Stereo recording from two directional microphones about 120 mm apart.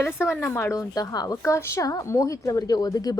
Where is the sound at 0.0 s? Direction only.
20° left (ahead or behind).